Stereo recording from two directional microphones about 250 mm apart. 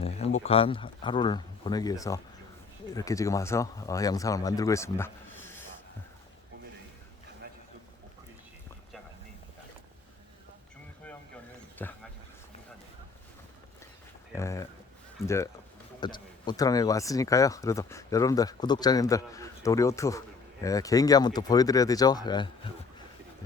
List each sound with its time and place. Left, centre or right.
0.0 s speech: left; by 5.6 s centre
11.8 s speech: centre
14.3 s speech: centre
16.0 s speech: centre